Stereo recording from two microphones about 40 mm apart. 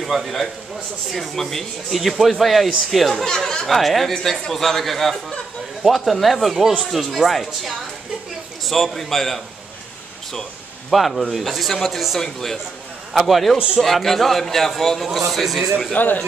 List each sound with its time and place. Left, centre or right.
0.0 s a man's voice: centre
3.3 s speech: centre
3.6 s a man's voice: centre
10.9 s speech: centre
13.3 s speech: centre
16.0 s speech: left